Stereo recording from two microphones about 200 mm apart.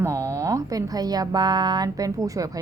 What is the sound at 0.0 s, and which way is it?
A woman's voice, 15° right (ahead or behind).